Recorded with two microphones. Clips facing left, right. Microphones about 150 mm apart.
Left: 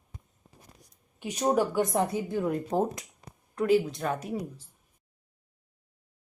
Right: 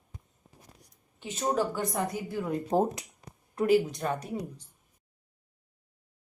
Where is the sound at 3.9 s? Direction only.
Centre (ahead or behind).